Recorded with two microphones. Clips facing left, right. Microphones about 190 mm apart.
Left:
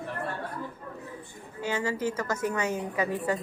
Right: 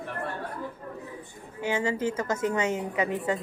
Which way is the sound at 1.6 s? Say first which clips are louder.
Right 2 dB; 20° right (ahead or behind).